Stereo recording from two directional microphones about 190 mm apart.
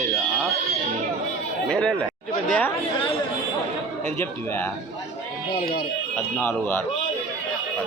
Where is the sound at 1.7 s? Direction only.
5° left (ahead or behind).